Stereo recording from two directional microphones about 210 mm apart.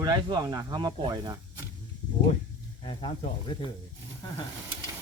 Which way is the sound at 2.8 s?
25° left (ahead or behind).